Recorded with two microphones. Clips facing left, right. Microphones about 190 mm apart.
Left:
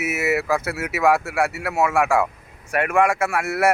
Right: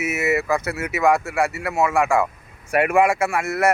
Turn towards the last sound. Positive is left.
turn(degrees=5)  # may be behind; listen again after turning